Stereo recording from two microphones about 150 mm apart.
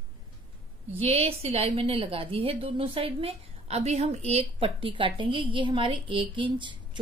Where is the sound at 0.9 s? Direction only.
40° right (ahead or behind).